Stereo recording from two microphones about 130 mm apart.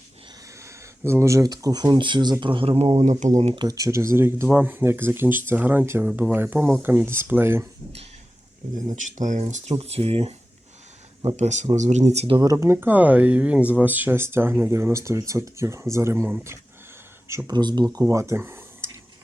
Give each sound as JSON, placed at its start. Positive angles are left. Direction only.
{"t": 0.6, "sound": "speech", "side_deg": -20}
{"t": 3.5, "sound": "speech", "side_deg": -35}
{"t": 9.0, "sound": "speech", "side_deg": -70}
{"t": 9.7, "sound": "speech", "side_deg": -50}
{"t": 11.3, "sound": "speech", "side_deg": -65}
{"t": 12.4, "sound": "speech", "side_deg": -25}
{"t": 17.5, "sound": "speech", "side_deg": -35}